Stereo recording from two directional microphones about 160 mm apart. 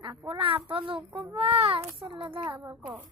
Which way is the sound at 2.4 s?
15° right (ahead or behind).